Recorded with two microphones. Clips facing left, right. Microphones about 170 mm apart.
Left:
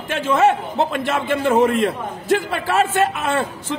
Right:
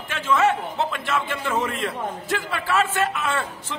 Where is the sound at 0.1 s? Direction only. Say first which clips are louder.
Left 4 dB; 35° left (ahead or behind).